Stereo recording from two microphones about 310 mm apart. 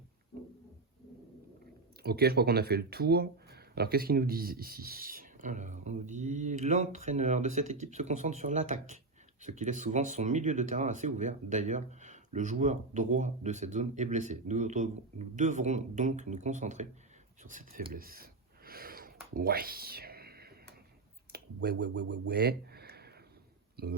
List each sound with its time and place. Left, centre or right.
2.0 s speech: right
17.4 s a sound: right
21.3 s speech: right